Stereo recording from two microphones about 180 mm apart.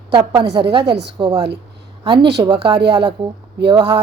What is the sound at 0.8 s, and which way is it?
Speech, 65° right (ahead or behind).